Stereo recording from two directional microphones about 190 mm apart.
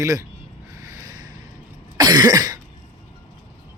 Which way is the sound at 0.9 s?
15° right (ahead or behind).